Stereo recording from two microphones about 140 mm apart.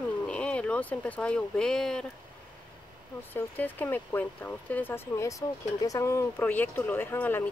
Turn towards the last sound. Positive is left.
turn(degrees=15)  # may be behind; listen again after turning